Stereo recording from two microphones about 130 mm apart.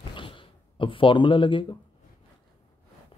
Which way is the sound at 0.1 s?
40° left (ahead or behind).